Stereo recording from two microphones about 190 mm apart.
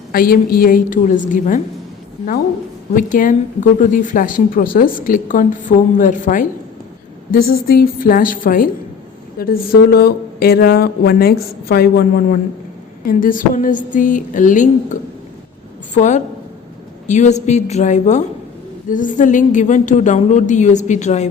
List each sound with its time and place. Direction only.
0.1 s speech: 50° left (ahead or behind)
2.9 s speech: 45° left (ahead or behind)
16.0 s a woman's voice: 40° left (ahead or behind)